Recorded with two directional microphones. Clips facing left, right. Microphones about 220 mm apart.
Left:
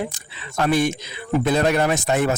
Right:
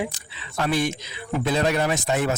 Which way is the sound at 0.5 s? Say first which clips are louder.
Left 4 dB; 50° left (ahead or behind).